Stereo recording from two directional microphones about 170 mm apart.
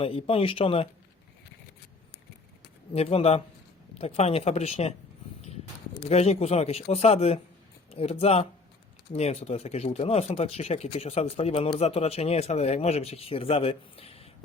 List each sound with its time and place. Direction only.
0.0 s speech: 35° left (ahead or behind)
2.9 s speech: 35° left (ahead or behind)
6.1 s speech: 35° left (ahead or behind)